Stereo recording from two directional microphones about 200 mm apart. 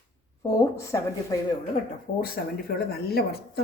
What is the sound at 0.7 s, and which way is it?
Speech, 15° left (ahead or behind).